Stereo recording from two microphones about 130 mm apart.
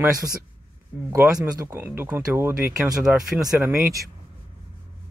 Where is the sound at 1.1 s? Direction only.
25° right (ahead or behind).